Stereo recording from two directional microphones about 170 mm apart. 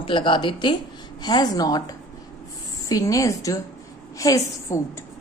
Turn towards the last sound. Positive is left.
turn(degrees=20)  # may be behind; listen again after turning